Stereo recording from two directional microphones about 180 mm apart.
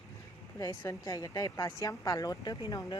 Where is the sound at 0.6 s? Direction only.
20° left (ahead or behind).